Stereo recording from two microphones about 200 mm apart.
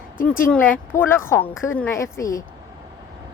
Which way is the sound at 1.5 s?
80° left.